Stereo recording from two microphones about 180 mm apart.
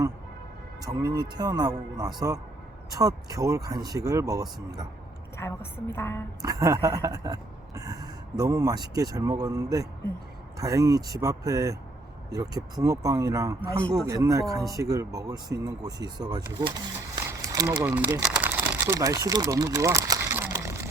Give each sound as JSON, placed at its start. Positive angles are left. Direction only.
{"t": 0.8, "sound": "speech", "side_deg": -20}
{"t": 5.4, "sound": "a woman's voice", "side_deg": 15}
{"t": 6.4, "sound": "speech", "side_deg": -20}
{"t": 17.2, "sound": "crumpling", "side_deg": -20}